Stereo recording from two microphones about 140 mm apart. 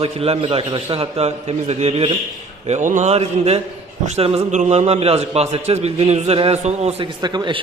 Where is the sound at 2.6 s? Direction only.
60° right (ahead or behind).